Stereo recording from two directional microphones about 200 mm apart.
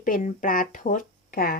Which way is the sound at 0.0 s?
40° left (ahead or behind).